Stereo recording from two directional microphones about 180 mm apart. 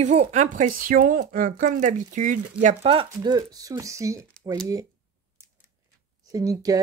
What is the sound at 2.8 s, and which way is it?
Speech, 30° right (ahead or behind).